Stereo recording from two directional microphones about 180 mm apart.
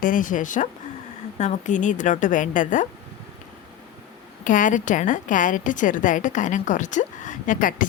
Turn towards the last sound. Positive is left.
turn(degrees=50)  # may be behind; listen again after turning